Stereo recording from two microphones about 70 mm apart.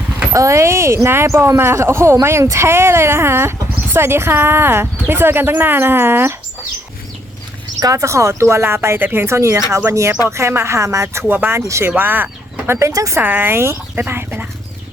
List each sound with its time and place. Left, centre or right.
0.3 s speech: right
7.8 s speech: right
12.9 s speech: right
13.1 s speech: right